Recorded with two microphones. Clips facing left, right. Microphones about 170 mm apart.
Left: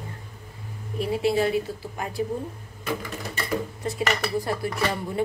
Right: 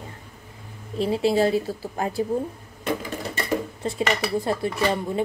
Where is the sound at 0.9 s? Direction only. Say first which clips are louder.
Right 2 dB; 30° right (ahead or behind).